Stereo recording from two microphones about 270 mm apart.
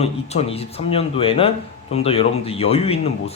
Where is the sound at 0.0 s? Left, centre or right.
Left.